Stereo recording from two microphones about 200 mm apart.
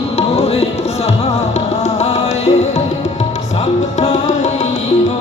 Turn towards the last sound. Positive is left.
turn(degrees=35)  # may be behind; listen again after turning